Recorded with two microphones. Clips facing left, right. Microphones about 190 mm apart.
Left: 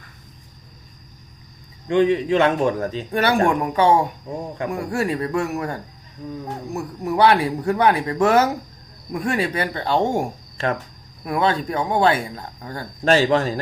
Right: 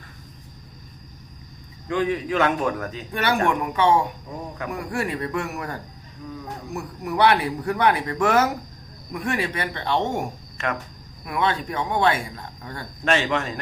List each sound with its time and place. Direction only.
1.9 s speech: 25° left (ahead or behind)
7.0 s speech: 30° left (ahead or behind)